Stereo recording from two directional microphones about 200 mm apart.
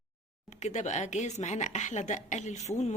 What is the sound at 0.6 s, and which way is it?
A woman's voice, 35° left (ahead or behind).